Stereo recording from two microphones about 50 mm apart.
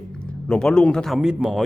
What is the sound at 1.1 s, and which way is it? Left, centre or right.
Speech, centre.